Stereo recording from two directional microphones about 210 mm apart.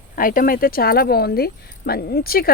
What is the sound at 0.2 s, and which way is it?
Speech, 40° left (ahead or behind).